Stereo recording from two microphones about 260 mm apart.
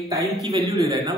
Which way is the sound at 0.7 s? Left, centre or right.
Centre.